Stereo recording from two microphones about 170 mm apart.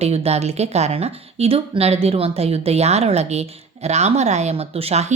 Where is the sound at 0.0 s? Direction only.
40° right (ahead or behind).